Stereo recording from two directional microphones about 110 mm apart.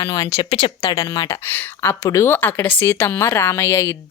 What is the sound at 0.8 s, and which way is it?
Speech, 30° left (ahead or behind).